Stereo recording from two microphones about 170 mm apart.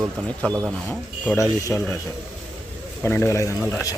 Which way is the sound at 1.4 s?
20° left (ahead or behind).